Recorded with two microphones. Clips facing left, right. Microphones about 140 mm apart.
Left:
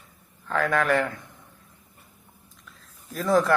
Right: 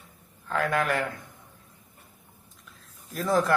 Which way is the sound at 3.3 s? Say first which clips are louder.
Left 3 dB; centre (ahead or behind).